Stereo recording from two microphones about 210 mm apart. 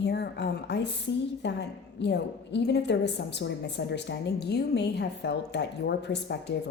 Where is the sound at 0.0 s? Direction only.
55° left (ahead or behind).